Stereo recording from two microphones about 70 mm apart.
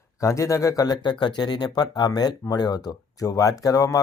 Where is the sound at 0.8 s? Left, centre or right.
Left.